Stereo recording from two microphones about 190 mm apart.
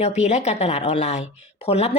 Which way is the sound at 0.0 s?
35° left (ahead or behind).